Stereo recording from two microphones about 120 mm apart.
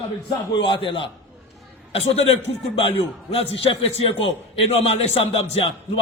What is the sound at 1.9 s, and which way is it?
A man's voice, 55° left (ahead or behind).